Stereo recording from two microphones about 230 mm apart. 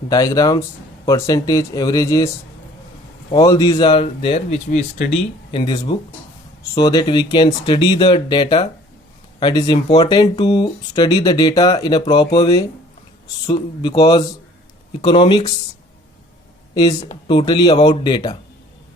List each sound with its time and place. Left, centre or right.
0.1 s speech: centre
3.3 s speech: centre
17.2 s speech: left